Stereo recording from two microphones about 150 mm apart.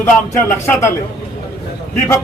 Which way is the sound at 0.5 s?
15° left (ahead or behind).